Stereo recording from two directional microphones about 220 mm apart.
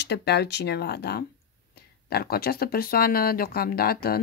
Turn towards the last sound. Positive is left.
turn(degrees=45)  # may be behind; listen again after turning